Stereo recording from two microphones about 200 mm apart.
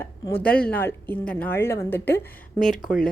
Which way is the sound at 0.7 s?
10° left (ahead or behind).